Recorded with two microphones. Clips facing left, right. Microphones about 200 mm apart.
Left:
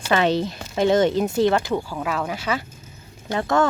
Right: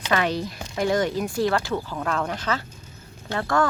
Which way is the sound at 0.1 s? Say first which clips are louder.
Left 4 dB; 25° left (ahead or behind).